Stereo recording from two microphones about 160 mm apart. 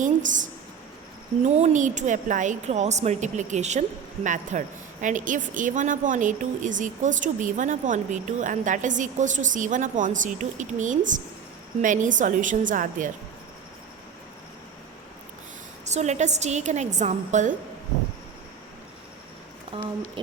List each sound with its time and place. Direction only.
0.0 s a woman's voice: 55° right (ahead or behind)
1.5 s a woman's voice: 45° right (ahead or behind)
15.9 s a woman's voice: 45° right (ahead or behind)
19.7 s speech: 35° right (ahead or behind)